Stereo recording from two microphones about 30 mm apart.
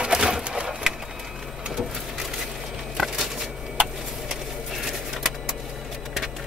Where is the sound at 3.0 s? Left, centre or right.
Centre.